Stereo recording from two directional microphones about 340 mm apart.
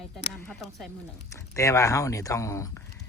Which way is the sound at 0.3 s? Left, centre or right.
Centre.